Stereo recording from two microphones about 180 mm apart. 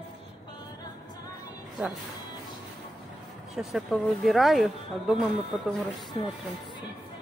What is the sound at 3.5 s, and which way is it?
Speech, centre (ahead or behind).